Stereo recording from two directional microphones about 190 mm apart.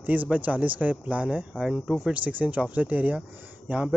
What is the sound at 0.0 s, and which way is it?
Speech, 10° right (ahead or behind).